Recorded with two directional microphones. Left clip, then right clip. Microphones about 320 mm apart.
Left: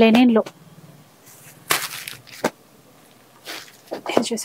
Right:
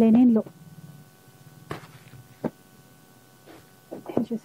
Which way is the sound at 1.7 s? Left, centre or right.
Centre.